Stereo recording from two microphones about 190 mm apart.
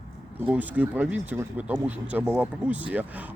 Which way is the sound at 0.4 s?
10° right (ahead or behind).